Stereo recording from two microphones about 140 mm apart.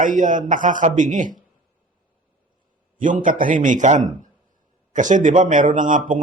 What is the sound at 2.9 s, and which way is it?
A man's voice, 70° right (ahead or behind).